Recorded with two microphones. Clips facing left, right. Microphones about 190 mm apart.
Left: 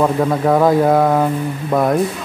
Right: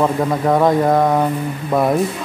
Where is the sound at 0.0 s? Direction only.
Centre (ahead or behind).